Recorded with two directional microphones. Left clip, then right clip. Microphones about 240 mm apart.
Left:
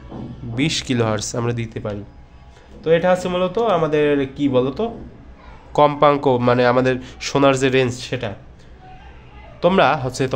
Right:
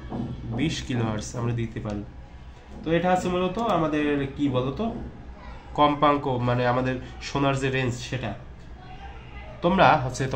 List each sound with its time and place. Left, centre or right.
0.6 s speech: left
9.6 s a man's voice: left